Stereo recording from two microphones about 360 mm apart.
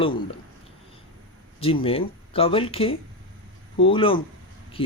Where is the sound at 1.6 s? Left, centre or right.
Centre.